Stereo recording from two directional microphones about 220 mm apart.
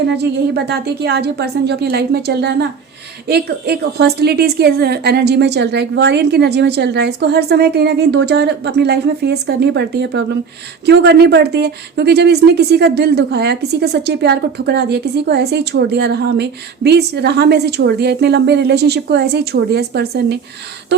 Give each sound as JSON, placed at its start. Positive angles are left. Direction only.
{"t": 0.1, "sound": "speech", "side_deg": -50}